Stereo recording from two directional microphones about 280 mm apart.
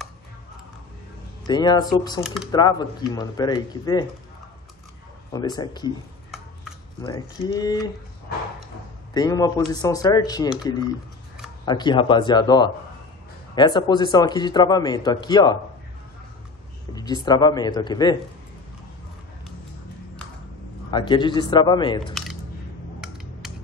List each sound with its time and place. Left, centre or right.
1.5 s a man's voice: centre
2.2 s speech: centre
2.5 s a man's voice: centre
5.3 s a man's voice: centre
7.0 s a man's voice: centre
9.1 s a man's voice: centre
11.6 s a man's voice: centre
16.9 s a man's voice: centre
20.9 s a man's voice: centre
22.1 s a sound: centre